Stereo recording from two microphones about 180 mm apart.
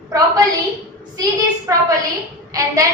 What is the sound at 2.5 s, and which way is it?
Speech, 20° right (ahead or behind).